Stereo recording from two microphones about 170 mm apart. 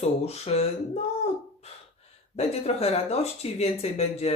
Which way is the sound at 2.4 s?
40° left (ahead or behind).